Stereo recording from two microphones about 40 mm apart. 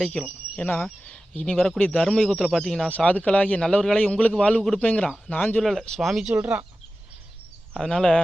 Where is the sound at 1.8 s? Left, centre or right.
Centre.